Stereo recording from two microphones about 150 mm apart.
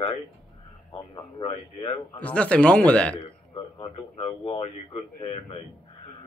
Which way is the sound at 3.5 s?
35° left (ahead or behind).